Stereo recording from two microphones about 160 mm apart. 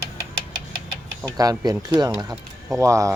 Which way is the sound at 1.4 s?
25° right (ahead or behind).